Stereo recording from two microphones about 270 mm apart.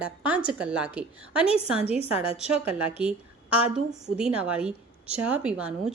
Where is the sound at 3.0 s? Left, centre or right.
Centre.